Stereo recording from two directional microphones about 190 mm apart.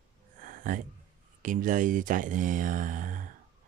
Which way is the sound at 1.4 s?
45° right (ahead or behind).